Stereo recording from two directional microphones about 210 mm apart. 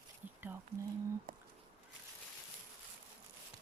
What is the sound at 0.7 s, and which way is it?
Speech, 30° right (ahead or behind).